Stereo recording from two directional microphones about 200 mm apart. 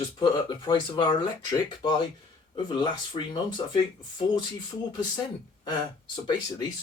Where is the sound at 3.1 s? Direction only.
20° left (ahead or behind).